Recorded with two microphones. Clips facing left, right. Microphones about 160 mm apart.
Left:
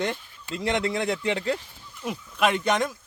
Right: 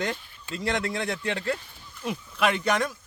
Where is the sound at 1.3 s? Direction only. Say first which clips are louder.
Left 2 dB; 15° left (ahead or behind).